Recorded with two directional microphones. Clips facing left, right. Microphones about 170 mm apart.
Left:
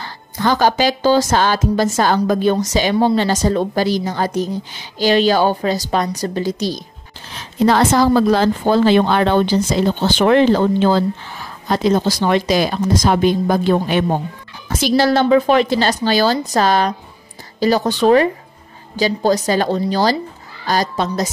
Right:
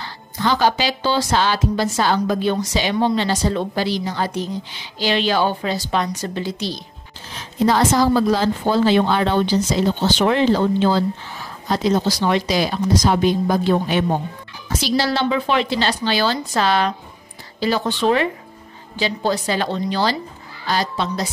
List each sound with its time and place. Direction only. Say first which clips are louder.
0.0 s a woman's voice: left 3 dB; 45° left (ahead or behind)
7.6 s a woman's voice: left 3 dB; 65° left (ahead or behind); by 21.3 s 45° left (ahead or behind)